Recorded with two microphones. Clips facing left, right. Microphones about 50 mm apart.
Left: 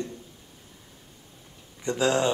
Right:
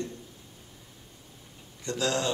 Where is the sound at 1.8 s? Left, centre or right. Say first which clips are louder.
Left 5 dB; left.